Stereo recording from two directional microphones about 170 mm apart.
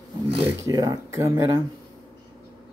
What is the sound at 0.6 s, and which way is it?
Speech, 20° right (ahead or behind).